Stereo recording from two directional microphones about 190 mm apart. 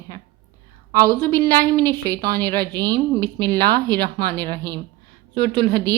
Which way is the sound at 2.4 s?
10° left (ahead or behind).